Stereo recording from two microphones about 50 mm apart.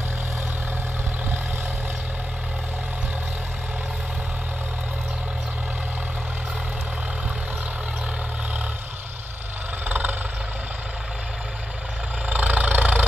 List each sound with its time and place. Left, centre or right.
9.8 s vehicle: right
12.3 s vehicle: right